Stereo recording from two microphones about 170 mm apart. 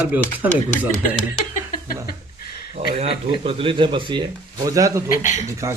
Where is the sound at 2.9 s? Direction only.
35° right (ahead or behind); by 5.0 s 20° right (ahead or behind).